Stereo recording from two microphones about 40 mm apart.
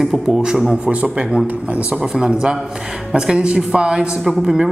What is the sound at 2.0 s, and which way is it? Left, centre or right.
Speech, centre.